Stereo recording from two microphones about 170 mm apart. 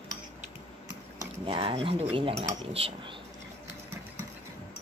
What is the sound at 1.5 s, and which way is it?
Speech, 30° right (ahead or behind).